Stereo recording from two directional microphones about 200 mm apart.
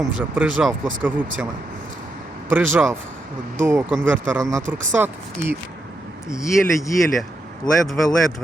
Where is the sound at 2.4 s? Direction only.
10° right (ahead or behind).